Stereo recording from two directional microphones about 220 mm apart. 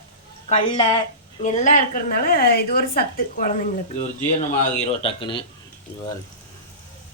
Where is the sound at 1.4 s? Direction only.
35° left (ahead or behind).